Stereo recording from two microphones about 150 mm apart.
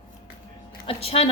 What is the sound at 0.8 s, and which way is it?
Speech, 40° left (ahead or behind).